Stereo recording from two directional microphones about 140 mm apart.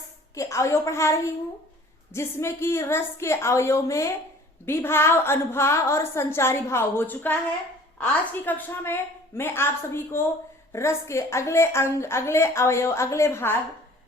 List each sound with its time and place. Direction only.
0.3 s a woman's voice: 20° left (ahead or behind)